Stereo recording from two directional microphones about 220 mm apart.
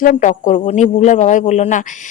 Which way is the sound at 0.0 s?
35° left (ahead or behind).